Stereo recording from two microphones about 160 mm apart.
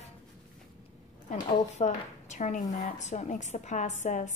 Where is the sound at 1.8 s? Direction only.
45° left (ahead or behind).